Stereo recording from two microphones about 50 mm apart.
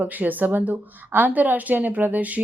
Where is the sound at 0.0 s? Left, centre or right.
Right.